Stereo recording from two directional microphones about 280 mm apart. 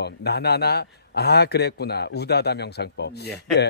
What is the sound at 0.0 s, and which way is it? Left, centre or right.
A man's voice, left.